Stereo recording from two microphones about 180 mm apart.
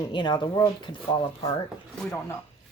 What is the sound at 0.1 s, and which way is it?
Speech, 25° left (ahead or behind).